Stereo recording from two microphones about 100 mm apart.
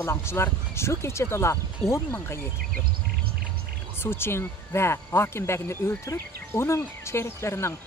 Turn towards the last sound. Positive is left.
turn(degrees=30)  # may be behind; listen again after turning